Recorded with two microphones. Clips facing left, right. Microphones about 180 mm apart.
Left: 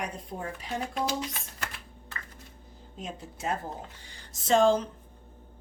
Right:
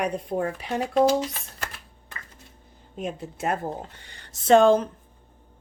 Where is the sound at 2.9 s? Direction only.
60° right (ahead or behind).